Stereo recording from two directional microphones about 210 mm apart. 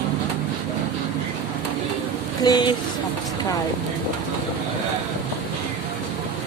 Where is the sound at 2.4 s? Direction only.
20° left (ahead or behind).